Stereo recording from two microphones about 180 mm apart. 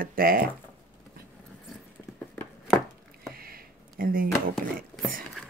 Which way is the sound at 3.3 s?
55° right (ahead or behind).